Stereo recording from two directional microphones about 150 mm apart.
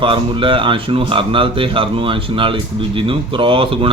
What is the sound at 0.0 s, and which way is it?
Speech, 35° right (ahead or behind).